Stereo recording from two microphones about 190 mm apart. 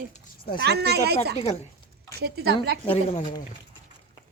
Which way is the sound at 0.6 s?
60° right (ahead or behind).